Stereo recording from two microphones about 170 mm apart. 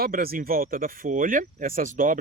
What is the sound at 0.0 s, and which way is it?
Speech, 60° right (ahead or behind).